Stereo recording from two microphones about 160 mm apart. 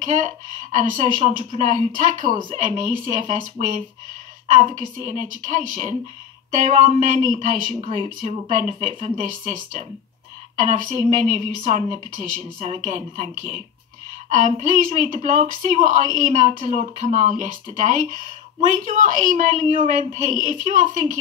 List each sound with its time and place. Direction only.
0.0 s a woman's voice: 50° right (ahead or behind)
4.6 s a woman's voice: 40° right (ahead or behind)
4.9 s a woman's voice: 50° right (ahead or behind)